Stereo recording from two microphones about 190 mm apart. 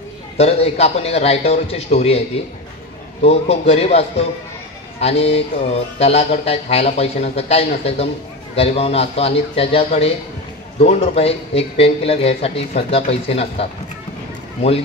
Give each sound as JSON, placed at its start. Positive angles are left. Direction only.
{"t": 0.4, "sound": "speech", "side_deg": 35}
{"t": 5.0, "sound": "speech", "side_deg": 30}